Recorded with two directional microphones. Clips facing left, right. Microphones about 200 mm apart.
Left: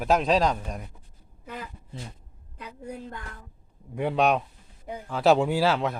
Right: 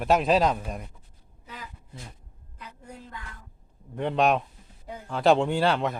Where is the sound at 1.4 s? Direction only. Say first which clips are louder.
Left 5 dB; 55° left (ahead or behind).